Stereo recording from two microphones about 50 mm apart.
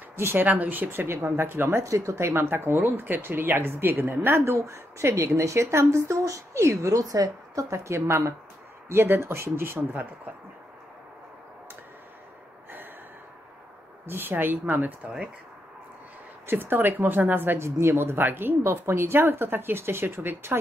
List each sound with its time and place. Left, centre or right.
0.1 s speech: right
0.5 s speech: right
7.8 s a woman's voice: right
8.8 s speech: right
14.0 s a woman's voice: right
16.4 s a woman's voice: right
17.6 s a woman's voice: right